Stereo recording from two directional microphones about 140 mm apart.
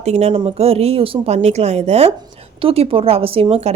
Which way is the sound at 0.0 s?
50° right (ahead or behind).